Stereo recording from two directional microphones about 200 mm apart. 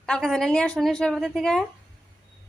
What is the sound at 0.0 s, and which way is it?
A woman's voice, centre (ahead or behind).